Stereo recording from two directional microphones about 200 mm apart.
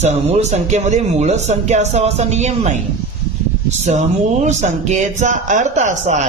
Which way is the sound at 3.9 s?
35° right (ahead or behind).